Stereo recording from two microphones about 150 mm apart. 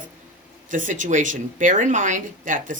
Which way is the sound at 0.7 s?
60° right (ahead or behind).